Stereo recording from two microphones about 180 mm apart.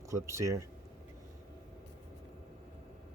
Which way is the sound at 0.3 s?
15° right (ahead or behind).